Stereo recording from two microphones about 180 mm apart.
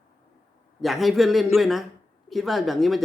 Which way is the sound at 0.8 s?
Centre (ahead or behind).